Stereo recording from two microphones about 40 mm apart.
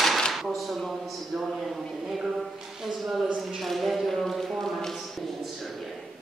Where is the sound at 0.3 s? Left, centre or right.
Centre.